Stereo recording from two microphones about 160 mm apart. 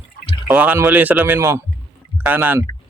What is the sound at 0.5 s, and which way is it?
Speech, 10° right (ahead or behind).